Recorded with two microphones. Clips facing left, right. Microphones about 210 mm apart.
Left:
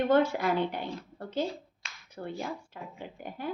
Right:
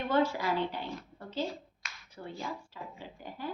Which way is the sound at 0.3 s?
60° left (ahead or behind).